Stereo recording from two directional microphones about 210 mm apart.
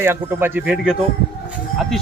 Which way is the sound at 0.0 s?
10° right (ahead or behind).